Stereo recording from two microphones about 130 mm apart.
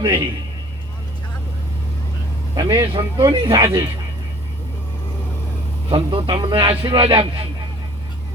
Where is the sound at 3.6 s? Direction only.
20° right (ahead or behind).